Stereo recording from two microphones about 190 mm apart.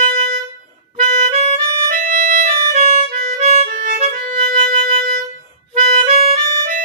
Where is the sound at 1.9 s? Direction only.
45° right (ahead or behind).